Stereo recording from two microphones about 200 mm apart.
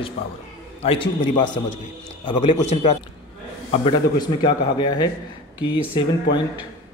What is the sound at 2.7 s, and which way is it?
A man's voice, 35° left (ahead or behind).